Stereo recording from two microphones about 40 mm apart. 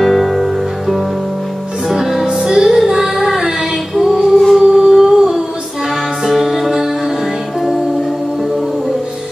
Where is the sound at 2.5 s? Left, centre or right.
Centre.